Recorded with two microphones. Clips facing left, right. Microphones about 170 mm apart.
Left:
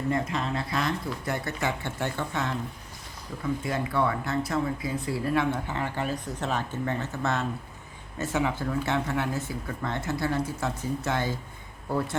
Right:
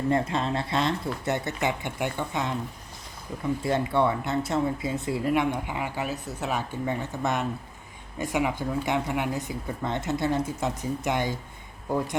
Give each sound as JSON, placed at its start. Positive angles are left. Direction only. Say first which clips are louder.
{"t": 0.1, "sound": "speech", "louder": "right 3 dB", "side_deg": -30}
{"t": 3.6, "sound": "speech", "louder": "right 4 dB", "side_deg": -25}